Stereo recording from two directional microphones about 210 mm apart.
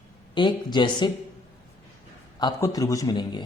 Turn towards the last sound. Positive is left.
turn(degrees=20)  # may be behind; listen again after turning